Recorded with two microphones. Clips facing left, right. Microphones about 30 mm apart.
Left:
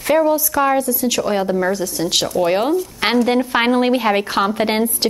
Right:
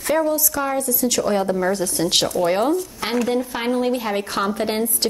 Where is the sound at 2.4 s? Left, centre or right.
Left.